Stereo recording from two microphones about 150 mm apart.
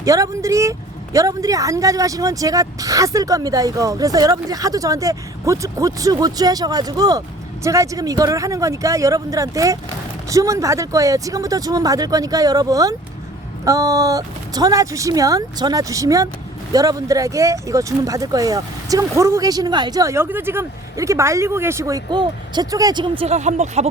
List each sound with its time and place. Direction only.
0.0 s speech: 20° right (ahead or behind); by 23.9 s 50° right (ahead or behind)